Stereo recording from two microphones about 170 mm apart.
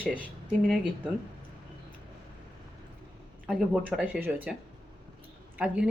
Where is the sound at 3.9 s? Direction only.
5° right (ahead or behind).